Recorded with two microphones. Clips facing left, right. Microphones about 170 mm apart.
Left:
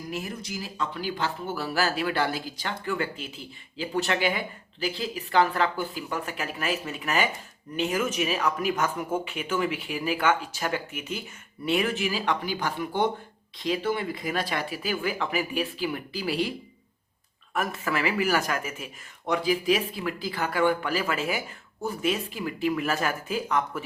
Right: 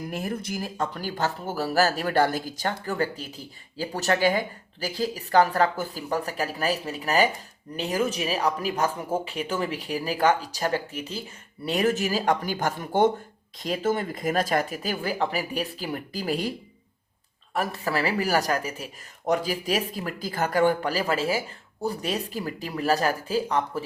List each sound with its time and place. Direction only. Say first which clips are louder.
0.1 s speech: right 2 dB; 55° right (ahead or behind)
17.5 s speech: right 1 dB; 35° right (ahead or behind)